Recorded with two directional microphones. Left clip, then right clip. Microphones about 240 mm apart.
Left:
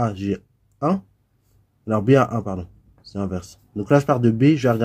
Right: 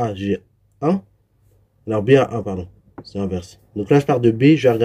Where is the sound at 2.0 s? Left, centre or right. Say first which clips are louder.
Right 3 dB; left.